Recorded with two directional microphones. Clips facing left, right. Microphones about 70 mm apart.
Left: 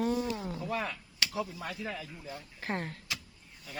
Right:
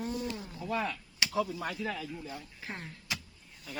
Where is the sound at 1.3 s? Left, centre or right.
Right.